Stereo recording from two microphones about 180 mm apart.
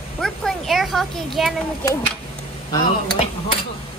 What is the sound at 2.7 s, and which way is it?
Dishes, 30° left (ahead or behind).